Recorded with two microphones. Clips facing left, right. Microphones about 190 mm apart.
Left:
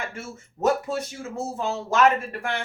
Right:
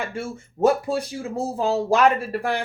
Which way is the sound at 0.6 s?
30° right (ahead or behind).